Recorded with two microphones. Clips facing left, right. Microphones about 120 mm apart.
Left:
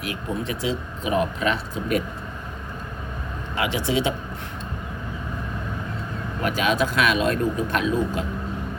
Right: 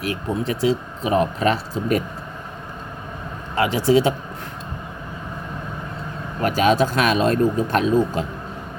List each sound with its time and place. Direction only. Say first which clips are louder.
0.0 s speech: right 4 dB; 35° right (ahead or behind)
3.5 s speech: right 7 dB; 40° right (ahead or behind)
6.4 s speech: right 5 dB; 40° right (ahead or behind)